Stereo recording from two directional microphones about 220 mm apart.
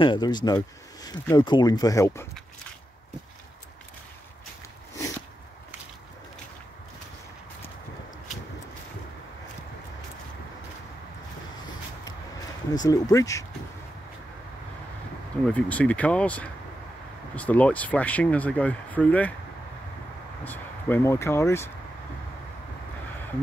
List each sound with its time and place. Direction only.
0.0 s speech: 20° left (ahead or behind)
12.7 s speech: 15° left (ahead or behind)
15.4 s speech: 5° left (ahead or behind)
20.4 s speech: 10° left (ahead or behind)